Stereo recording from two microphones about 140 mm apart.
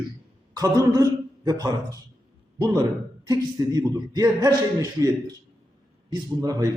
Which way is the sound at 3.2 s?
25° right (ahead or behind).